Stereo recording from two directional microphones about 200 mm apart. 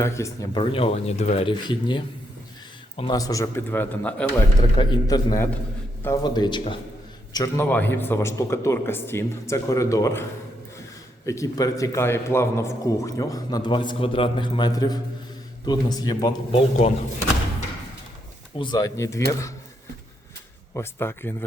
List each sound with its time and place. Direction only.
0.0 s a man's voice: 15° left (ahead or behind)
4.8 s a man's voice: 20° left (ahead or behind)
11.3 s a man's voice: 15° left (ahead or behind)
18.5 s a man's voice: 20° left (ahead or behind)
20.7 s a man's voice: 10° left (ahead or behind)